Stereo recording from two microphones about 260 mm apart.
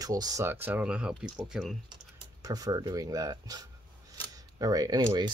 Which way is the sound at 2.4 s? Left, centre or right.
Centre.